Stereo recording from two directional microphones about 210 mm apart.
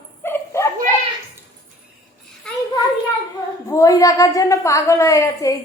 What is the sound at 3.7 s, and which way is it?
A woman's voice, 15° left (ahead or behind).